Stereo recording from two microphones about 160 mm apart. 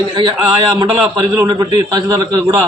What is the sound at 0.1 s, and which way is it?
A man's voice, 30° right (ahead or behind).